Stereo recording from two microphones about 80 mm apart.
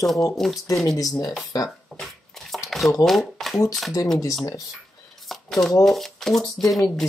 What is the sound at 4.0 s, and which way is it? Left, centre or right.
Speech, left.